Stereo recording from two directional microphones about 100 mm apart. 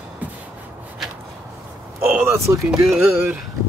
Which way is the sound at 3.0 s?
10° right (ahead or behind).